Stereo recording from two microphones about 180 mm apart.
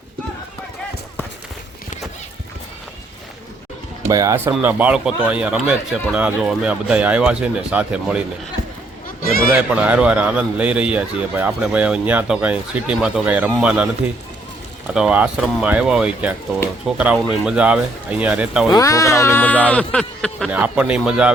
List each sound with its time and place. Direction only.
4.0 s a man's voice: 20° right (ahead or behind)
9.6 s a man's voice: 5° right (ahead or behind)
14.9 s a man's voice: 5° right (ahead or behind)
18.7 s music: 20° left (ahead or behind)
19.6 s speech: 5° left (ahead or behind)
20.5 s speech: 5° right (ahead or behind)